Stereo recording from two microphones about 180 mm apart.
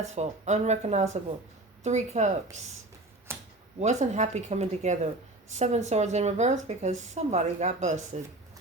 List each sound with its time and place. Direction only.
0.1 s speech: 40° right (ahead or behind)
3.8 s speech: 40° right (ahead or behind)